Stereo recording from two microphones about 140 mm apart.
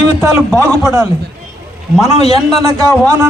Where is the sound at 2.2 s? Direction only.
45° left (ahead or behind).